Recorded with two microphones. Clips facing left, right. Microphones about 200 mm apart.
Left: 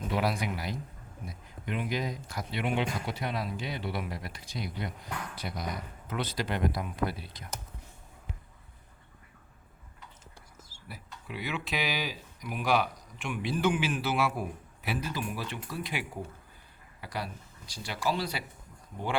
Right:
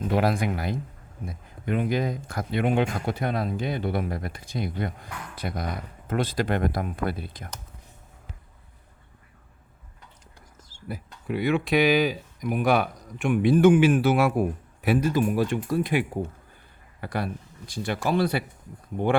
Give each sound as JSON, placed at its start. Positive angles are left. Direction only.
{"t": 0.1, "sound": "speech", "side_deg": -50}
{"t": 10.8, "sound": "speech", "side_deg": -50}